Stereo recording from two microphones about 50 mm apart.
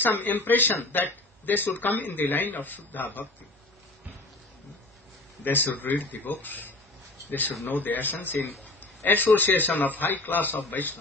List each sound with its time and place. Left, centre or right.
0.0 s speech: left
5.4 s speech: left